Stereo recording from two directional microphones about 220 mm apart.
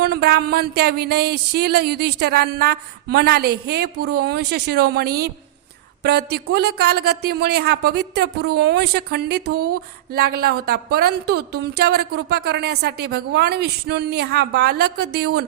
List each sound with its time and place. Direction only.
0.0 s speech: 45° right (ahead or behind)